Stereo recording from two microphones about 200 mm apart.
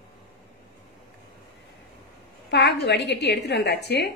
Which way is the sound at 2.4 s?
55° left (ahead or behind).